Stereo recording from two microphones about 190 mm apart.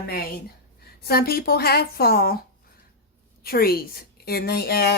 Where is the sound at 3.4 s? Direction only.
50° left (ahead or behind).